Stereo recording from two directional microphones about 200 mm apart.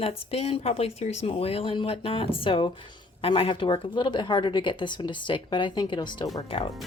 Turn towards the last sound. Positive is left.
turn(degrees=25)  # may be behind; listen again after turning